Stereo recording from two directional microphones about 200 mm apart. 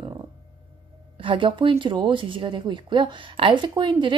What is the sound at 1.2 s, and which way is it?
A woman's voice, 25° right (ahead or behind).